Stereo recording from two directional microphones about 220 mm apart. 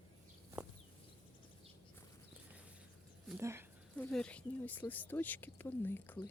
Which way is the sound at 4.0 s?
5° left (ahead or behind).